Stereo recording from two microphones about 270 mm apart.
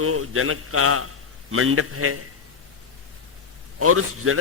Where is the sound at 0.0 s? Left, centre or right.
Right.